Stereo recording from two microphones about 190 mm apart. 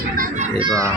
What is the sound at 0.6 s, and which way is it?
Speech, 20° right (ahead or behind).